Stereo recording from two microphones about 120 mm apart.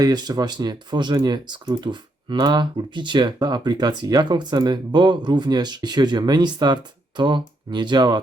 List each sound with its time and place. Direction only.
0.0 s speech: 35° right (ahead or behind)